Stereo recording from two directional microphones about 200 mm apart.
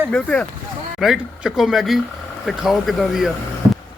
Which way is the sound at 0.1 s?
5° left (ahead or behind).